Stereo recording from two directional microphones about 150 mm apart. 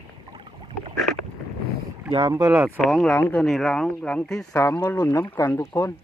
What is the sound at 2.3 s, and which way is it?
Speech, 20° right (ahead or behind).